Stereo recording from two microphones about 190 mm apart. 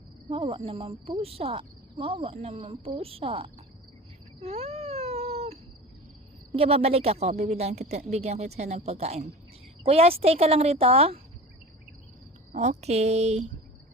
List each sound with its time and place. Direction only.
0.3 s speech: 30° right (ahead or behind)
4.4 s cat: 35° right (ahead or behind)
6.5 s speech: 30° right (ahead or behind)
12.5 s speech: 35° right (ahead or behind)